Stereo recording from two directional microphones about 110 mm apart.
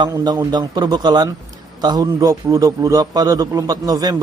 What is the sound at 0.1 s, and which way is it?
A man's voice, 35° right (ahead or behind).